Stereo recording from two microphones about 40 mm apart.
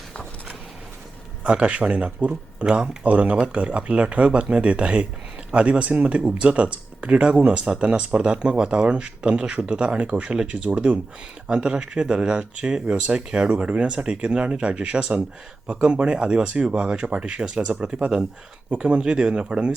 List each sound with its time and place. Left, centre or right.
1.5 s speech: right
11.4 s speech: right
17.5 s speech: right
18.0 s speech: right